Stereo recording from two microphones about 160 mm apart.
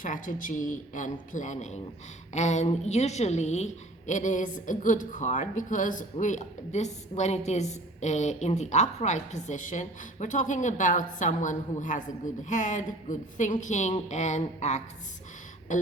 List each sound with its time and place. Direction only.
0.0 s a woman's voice: 55° left (ahead or behind)